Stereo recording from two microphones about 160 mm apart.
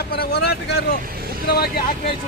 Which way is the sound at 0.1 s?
80° left.